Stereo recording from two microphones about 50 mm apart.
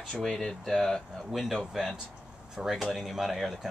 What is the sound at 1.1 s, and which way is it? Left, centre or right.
Speech, centre.